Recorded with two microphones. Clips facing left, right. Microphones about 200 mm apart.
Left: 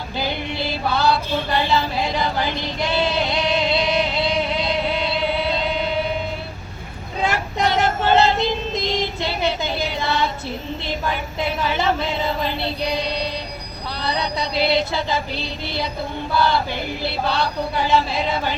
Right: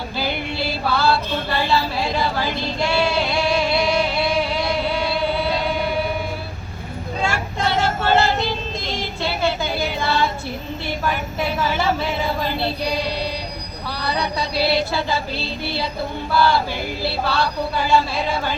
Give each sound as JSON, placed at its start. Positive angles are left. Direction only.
{"t": 0.2, "sound": "music", "side_deg": 20}
{"t": 1.7, "sound": "female singing", "side_deg": 20}
{"t": 7.2, "sound": "child singing", "side_deg": 20}
{"t": 10.8, "sound": "a sound", "side_deg": 20}